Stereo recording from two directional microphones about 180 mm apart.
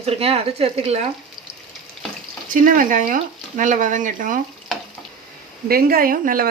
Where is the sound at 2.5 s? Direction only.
45° right (ahead or behind).